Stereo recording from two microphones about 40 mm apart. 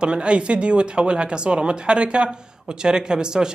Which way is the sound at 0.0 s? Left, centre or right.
Right.